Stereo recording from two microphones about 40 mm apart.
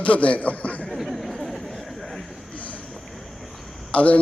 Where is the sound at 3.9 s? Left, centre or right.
Left.